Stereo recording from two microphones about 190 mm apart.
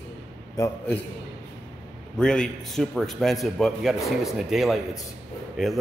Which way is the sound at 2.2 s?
5° left (ahead or behind).